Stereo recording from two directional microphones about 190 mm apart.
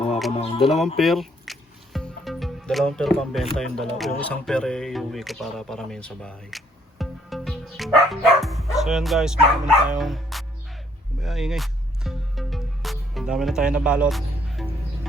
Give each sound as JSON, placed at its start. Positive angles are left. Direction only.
{"t": 0.3, "sound": "music", "side_deg": 35}
{"t": 0.6, "sound": "speech", "side_deg": 0}
{"t": 7.0, "sound": "music", "side_deg": 0}
{"t": 8.8, "sound": "speech", "side_deg": 0}
{"t": 10.0, "sound": "music", "side_deg": 0}